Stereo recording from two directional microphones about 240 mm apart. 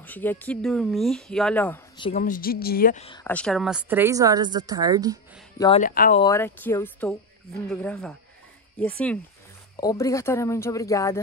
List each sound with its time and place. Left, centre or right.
0.0 s speech: centre
2.1 s a woman's voice: left
3.3 s speech: centre
5.8 s a woman's voice: left
6.2 s a woman's voice: centre